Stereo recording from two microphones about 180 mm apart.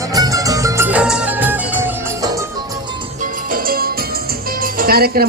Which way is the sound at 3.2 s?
50° right (ahead or behind).